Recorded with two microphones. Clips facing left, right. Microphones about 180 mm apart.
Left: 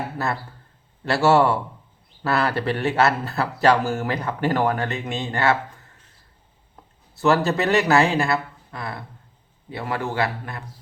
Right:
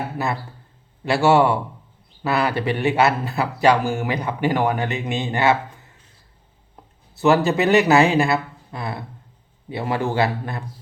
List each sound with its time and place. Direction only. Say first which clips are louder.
1.0 s speech: right 1 dB; 15° right (ahead or behind)
7.2 s speech: right 2 dB; 20° right (ahead or behind)